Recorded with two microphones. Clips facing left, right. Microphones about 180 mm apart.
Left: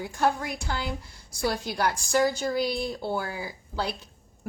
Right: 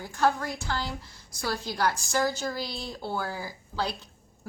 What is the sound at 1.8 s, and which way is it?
Speech, 10° left (ahead or behind).